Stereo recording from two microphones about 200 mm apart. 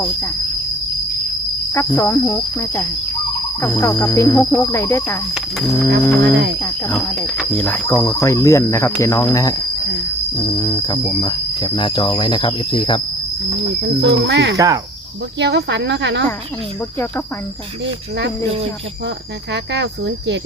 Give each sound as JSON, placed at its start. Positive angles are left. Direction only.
{"t": 1.7, "sound": "speech", "side_deg": 10}
{"t": 5.3, "sound": "speech", "side_deg": 0}
{"t": 6.3, "sound": "speech", "side_deg": -60}
{"t": 6.6, "sound": "speech", "side_deg": 15}
{"t": 13.8, "sound": "speech", "side_deg": -60}
{"t": 14.5, "sound": "insect", "side_deg": -15}
{"t": 15.4, "sound": "speech", "side_deg": -60}
{"t": 19.7, "sound": "speech", "side_deg": -60}